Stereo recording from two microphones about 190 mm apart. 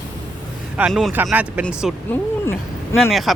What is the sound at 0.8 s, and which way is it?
Speech, 10° right (ahead or behind).